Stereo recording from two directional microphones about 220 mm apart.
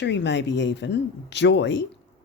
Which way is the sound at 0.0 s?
55° left (ahead or behind).